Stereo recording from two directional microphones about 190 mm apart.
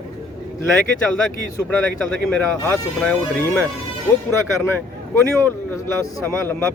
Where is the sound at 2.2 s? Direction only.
5° left (ahead or behind).